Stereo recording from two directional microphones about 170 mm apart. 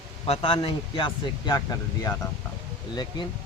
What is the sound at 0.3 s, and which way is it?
Speech, 30° left (ahead or behind).